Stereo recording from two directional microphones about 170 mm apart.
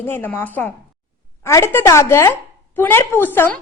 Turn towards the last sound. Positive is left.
turn(degrees=10)  # may be behind; listen again after turning